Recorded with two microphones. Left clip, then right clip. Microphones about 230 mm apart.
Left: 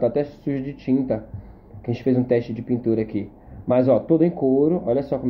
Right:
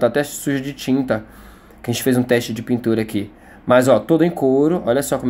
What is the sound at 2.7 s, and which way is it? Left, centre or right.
Speech, right.